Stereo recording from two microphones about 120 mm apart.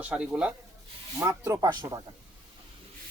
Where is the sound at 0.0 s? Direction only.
10° right (ahead or behind).